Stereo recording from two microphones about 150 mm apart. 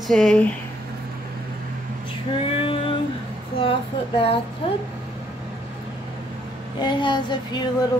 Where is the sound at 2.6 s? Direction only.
35° left (ahead or behind).